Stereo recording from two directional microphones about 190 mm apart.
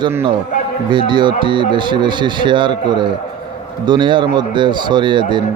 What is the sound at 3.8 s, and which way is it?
A man's voice, 25° right (ahead or behind).